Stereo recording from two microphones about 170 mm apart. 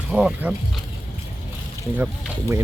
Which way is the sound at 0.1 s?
5° right (ahead or behind).